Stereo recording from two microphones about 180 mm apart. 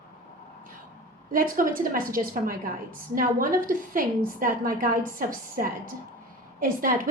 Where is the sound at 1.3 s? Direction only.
50° right (ahead or behind).